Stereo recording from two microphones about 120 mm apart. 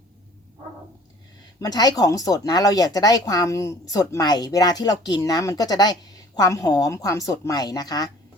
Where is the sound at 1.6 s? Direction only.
30° left (ahead or behind).